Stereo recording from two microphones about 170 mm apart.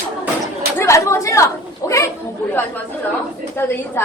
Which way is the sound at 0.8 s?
15° left (ahead or behind).